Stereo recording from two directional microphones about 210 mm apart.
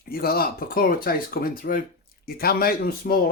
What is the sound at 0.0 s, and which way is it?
Speech, 45° left (ahead or behind).